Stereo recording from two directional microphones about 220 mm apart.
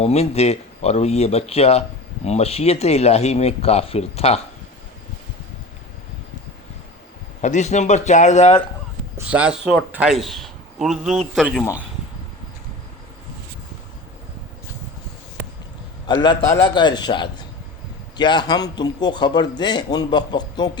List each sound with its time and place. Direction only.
0.0 s a man's voice: 30° left (ahead or behind)
7.4 s speech: 30° left (ahead or behind)
9.1 s speech: 5° right (ahead or behind)
16.0 s a man's voice: 20° left (ahead or behind)